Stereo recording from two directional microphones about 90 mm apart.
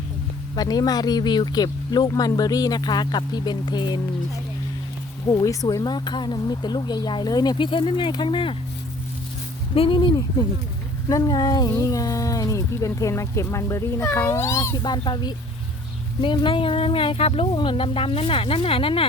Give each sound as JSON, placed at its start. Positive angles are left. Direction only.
{"t": 0.5, "sound": "speech", "side_deg": 45}
{"t": 5.8, "sound": "speech", "side_deg": 55}
{"t": 7.6, "sound": "speech", "side_deg": 70}
{"t": 9.7, "sound": "speech", "side_deg": 80}
{"t": 11.1, "sound": "speech", "side_deg": 50}
{"t": 11.7, "sound": "speech", "side_deg": 40}
{"t": 14.8, "sound": "speech", "side_deg": 55}